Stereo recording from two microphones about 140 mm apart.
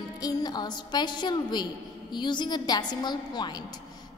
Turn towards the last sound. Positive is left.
turn(degrees=30)  # may be behind; listen again after turning